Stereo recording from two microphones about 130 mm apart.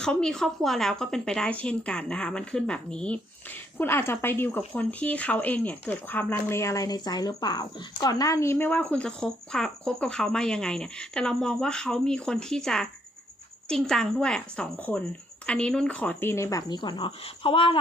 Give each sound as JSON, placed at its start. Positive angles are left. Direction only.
{"t": 0.0, "sound": "speech", "side_deg": 5}
{"t": 3.8, "sound": "speech", "side_deg": 15}